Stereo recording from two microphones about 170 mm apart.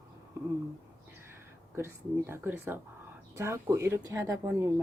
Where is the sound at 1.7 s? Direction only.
15° right (ahead or behind).